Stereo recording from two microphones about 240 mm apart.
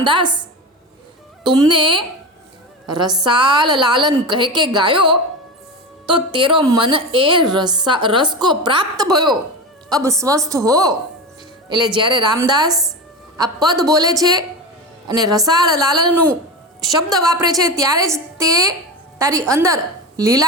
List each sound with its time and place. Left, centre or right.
0.0 s a woman's voice: centre
1.5 s a woman's voice: centre